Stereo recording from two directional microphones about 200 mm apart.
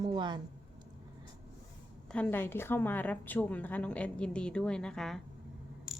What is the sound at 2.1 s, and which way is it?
A woman's voice, 10° left (ahead or behind).